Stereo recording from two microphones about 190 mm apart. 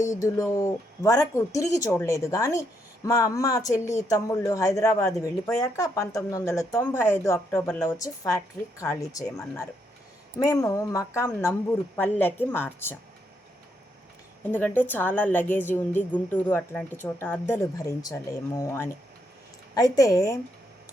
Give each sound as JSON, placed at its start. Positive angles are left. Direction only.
{"t": 0.1, "sound": "speech", "side_deg": 15}
{"t": 14.5, "sound": "speech", "side_deg": 10}